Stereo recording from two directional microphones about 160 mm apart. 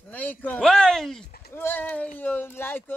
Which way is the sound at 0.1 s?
10° left (ahead or behind).